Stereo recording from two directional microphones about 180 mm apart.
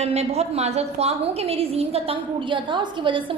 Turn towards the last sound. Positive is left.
turn(degrees=-25)  # may be behind; listen again after turning